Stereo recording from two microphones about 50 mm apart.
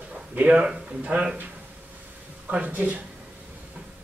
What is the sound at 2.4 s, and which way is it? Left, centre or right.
Speech, right.